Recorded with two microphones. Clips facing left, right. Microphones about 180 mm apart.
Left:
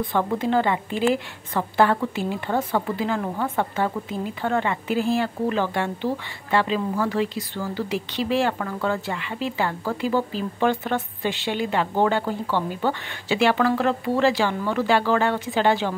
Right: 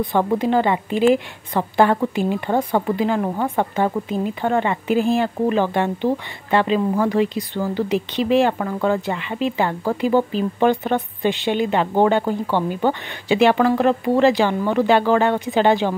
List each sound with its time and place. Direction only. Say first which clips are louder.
0.1 s a woman's voice: right 4 dB; 20° right (ahead or behind)